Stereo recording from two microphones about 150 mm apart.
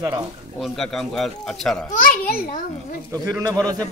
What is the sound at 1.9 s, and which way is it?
Speech, 65° left (ahead or behind).